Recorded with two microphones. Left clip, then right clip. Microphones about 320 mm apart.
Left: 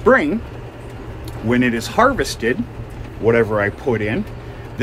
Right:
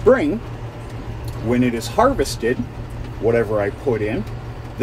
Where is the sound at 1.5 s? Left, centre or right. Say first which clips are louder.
Left 2 dB; left.